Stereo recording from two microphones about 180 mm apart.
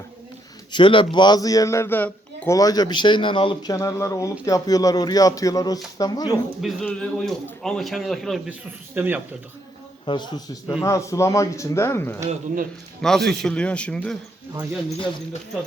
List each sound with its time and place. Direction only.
0.7 s speech: 25° left (ahead or behind); by 2.6 s 10° left (ahead or behind)
2.6 s speech: 20° left (ahead or behind)
6.6 s a man's voice: centre (ahead or behind)
9.0 s speech: 10° right (ahead or behind)
10.1 s speech: 25° left (ahead or behind)
13.0 s a man's voice: centre (ahead or behind)
14.9 s speech: 30° left (ahead or behind)